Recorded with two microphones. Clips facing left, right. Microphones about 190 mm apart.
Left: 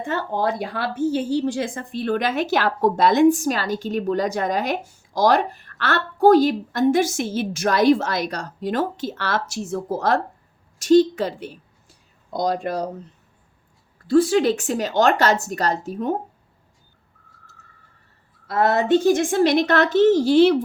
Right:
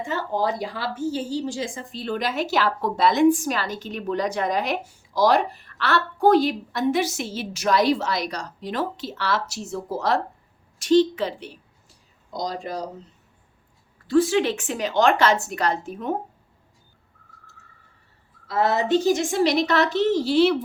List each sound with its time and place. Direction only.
0.0 s speech: 55° left (ahead or behind)
12.3 s speech: 60° left (ahead or behind)
14.1 s a woman's voice: 40° left (ahead or behind)
18.4 s speech: 55° left (ahead or behind)